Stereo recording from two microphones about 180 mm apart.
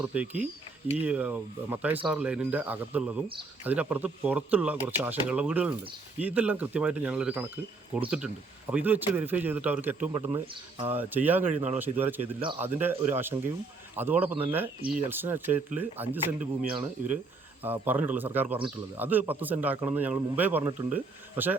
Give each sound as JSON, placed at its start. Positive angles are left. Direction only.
{"t": 0.0, "sound": "speech", "side_deg": -10}